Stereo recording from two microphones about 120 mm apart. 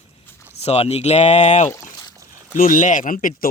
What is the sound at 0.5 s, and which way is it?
Speech, 60° left (ahead or behind).